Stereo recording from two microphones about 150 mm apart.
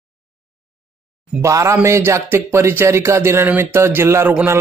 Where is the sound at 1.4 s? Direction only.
20° right (ahead or behind).